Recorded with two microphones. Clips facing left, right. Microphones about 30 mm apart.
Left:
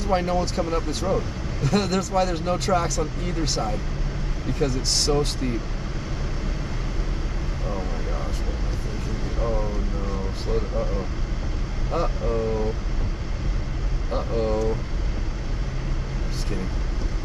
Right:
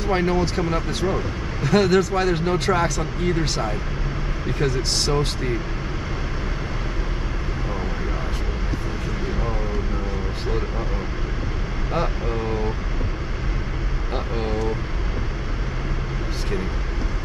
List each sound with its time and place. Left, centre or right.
0.0 s speech: centre
5.1 s speech: centre
11.9 s speech: right
14.1 s speech: right